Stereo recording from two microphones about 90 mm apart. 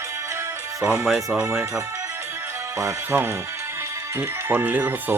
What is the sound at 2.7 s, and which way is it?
Speech, 30° right (ahead or behind).